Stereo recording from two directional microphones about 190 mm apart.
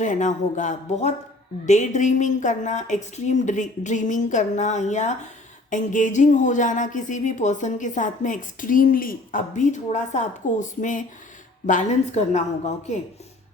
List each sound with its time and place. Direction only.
0.0 s a woman's voice: 40° left (ahead or behind)